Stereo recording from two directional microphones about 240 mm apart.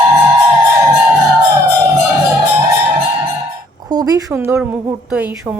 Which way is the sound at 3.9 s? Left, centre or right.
Centre.